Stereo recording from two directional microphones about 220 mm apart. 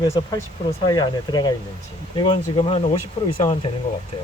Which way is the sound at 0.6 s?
20° left (ahead or behind).